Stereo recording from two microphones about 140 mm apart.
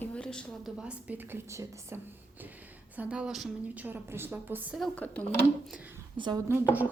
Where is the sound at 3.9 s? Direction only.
15° right (ahead or behind).